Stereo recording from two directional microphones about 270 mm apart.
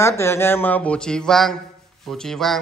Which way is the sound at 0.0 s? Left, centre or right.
Centre.